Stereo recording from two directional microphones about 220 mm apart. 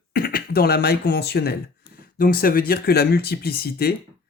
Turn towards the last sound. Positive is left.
turn(degrees=45)  # may be behind; listen again after turning